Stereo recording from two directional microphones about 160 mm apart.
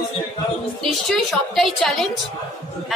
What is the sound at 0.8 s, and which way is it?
A woman's voice, centre (ahead or behind).